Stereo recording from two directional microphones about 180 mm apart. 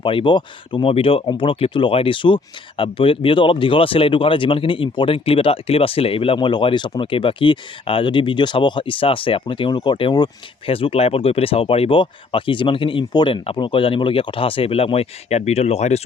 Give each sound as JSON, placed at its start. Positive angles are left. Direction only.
{"t": 0.0, "sound": "speech", "side_deg": 30}